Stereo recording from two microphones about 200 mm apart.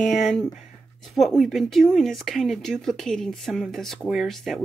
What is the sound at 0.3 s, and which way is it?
Speech, centre (ahead or behind).